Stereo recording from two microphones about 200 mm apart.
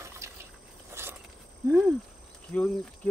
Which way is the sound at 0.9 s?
15° right (ahead or behind).